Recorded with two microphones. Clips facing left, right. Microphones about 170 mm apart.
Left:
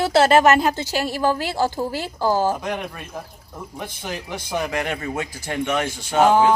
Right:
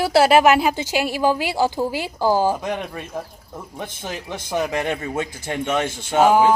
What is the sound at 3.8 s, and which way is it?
Speech, 20° right (ahead or behind).